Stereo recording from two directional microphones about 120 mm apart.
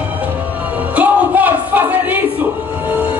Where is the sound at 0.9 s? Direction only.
15° right (ahead or behind).